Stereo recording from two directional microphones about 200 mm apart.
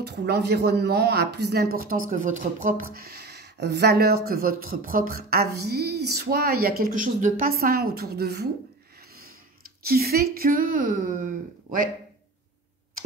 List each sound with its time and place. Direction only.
0.0 s speech: 55° right (ahead or behind)
9.6 s speech: 50° right (ahead or behind)